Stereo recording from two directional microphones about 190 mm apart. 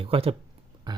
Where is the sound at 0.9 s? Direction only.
20° right (ahead or behind).